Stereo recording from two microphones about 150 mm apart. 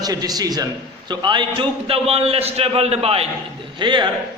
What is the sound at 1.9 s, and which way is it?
A man's voice, 40° right (ahead or behind).